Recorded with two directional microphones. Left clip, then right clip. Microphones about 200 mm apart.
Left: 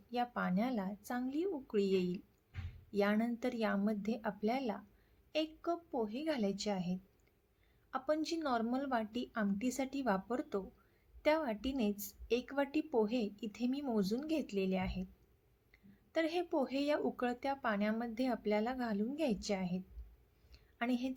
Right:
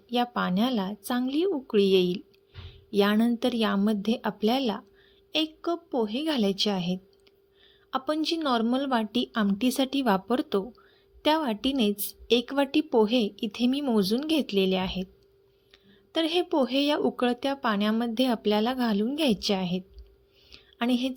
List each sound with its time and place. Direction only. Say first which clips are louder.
0.1 s a woman's voice: right 10 dB; 40° right (ahead or behind)
16.1 s a woman's voice: right 10 dB; 35° right (ahead or behind)
20.5 s a sound: right 10 dB; 40° right (ahead or behind)